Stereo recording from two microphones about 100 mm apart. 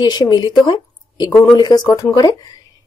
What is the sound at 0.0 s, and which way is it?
Speech, 45° left (ahead or behind).